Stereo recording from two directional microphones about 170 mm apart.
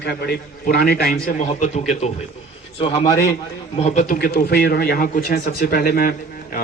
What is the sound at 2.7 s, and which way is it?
Speech, 30° left (ahead or behind).